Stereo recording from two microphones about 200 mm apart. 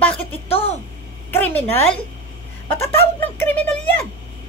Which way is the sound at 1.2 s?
10° left (ahead or behind).